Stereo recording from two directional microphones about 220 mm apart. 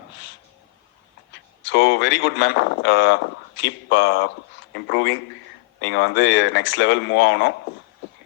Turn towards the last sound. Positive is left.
turn(degrees=55)  # may be behind; listen again after turning